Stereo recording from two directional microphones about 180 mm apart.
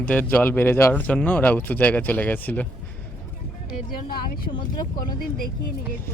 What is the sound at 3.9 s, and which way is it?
Speech, 55° left (ahead or behind).